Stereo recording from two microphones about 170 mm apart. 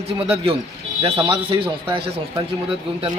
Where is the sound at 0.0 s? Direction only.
35° right (ahead or behind).